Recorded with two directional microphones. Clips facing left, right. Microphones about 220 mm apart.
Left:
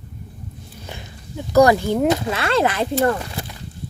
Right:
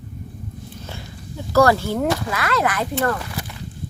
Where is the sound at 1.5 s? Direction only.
15° left (ahead or behind).